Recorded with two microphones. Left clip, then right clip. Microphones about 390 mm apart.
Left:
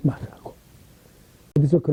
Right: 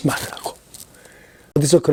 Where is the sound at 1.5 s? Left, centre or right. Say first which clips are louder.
Right 5 dB; centre.